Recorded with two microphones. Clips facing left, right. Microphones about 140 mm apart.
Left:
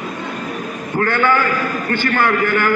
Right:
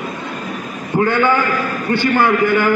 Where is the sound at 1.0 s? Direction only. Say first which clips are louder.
Right 1 dB; 15° right (ahead or behind).